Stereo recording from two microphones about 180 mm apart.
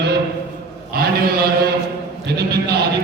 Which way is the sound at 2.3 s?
65° right (ahead or behind).